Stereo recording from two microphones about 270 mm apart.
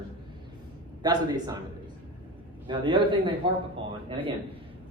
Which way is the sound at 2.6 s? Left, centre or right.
Centre.